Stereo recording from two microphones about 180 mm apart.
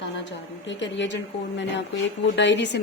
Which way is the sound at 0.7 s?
85° left.